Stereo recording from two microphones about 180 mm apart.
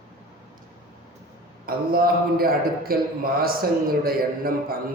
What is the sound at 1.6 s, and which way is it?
A man's voice, 55° right (ahead or behind).